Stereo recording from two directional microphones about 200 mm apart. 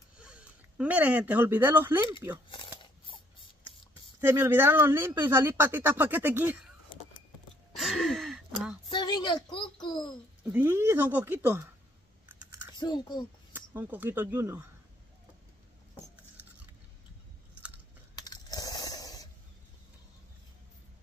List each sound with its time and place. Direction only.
0.2 s speech: 5° right (ahead or behind)
2.5 s a sound: 25° left (ahead or behind)
4.2 s speech: 10° right (ahead or behind)
7.7 s gasp: centre (ahead or behind)
8.8 s a sound: 20° left (ahead or behind)
10.4 s speech: 10° right (ahead or behind)
12.7 s speech: 20° left (ahead or behind)
13.5 s speech: 10° right (ahead or behind)
18.1 s coin: 20° left (ahead or behind)